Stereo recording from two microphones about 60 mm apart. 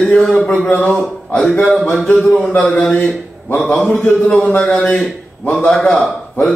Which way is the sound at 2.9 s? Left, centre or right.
Left.